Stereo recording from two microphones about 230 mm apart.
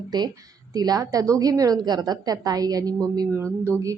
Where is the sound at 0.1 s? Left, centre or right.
Centre.